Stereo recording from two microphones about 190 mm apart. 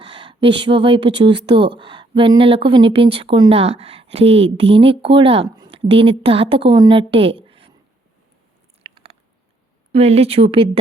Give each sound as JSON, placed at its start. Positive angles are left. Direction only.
{"t": 0.1, "sound": "speech", "side_deg": -25}
{"t": 8.8, "sound": "biting", "side_deg": -25}
{"t": 9.9, "sound": "speech", "side_deg": -35}